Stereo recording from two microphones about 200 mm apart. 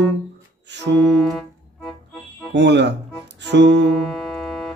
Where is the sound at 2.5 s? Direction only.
60° right (ahead or behind).